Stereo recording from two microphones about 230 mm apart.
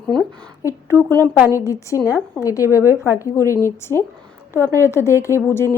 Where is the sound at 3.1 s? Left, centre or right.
Centre.